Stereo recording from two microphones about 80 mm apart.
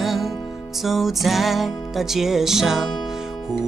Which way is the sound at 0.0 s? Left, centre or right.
Centre.